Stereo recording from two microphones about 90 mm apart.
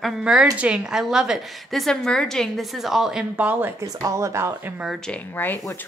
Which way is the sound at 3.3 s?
20° right (ahead or behind).